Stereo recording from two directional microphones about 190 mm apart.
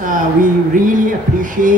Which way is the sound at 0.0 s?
45° right (ahead or behind).